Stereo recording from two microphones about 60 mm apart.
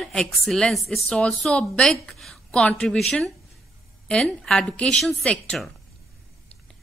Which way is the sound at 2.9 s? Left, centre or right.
Centre.